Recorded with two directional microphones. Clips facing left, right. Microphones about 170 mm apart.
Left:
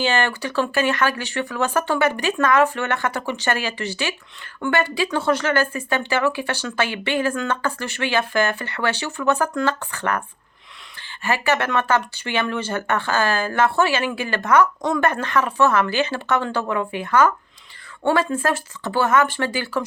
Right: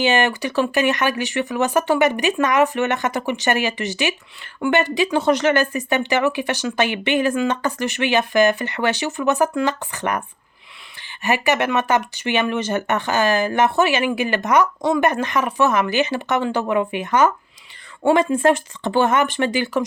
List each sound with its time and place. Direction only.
0.0 s speech: 15° right (ahead or behind)